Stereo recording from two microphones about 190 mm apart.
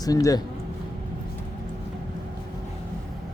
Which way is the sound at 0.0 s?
20° left (ahead or behind).